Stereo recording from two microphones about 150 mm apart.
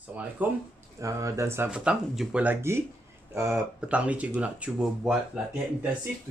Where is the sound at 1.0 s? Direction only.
20° right (ahead or behind).